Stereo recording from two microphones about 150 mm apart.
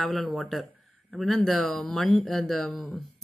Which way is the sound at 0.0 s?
Centre (ahead or behind).